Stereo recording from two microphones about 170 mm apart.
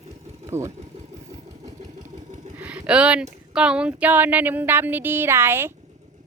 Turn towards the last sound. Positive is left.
turn(degrees=-15)  # may be behind; listen again after turning